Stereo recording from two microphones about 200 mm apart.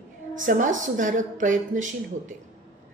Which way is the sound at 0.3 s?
40° right (ahead or behind).